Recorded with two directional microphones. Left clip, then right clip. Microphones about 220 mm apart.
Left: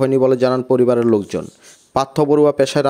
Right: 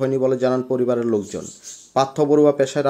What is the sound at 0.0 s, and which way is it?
Speech, 45° left (ahead or behind).